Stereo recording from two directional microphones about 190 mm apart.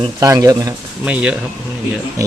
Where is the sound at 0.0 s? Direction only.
20° right (ahead or behind).